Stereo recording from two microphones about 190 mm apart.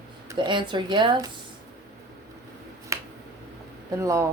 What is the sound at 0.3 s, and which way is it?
Speech, 25° right (ahead or behind).